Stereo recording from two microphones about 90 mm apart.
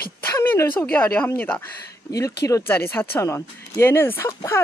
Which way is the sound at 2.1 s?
40° left (ahead or behind).